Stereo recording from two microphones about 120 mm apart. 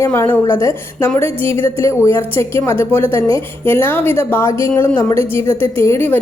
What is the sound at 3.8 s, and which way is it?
A woman's voice, 15° left (ahead or behind).